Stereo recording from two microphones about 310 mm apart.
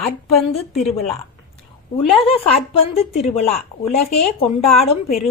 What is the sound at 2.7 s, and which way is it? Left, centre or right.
Speech, centre.